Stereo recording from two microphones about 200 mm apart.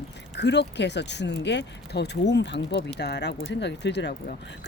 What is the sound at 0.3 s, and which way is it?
Speech, 60° left (ahead or behind).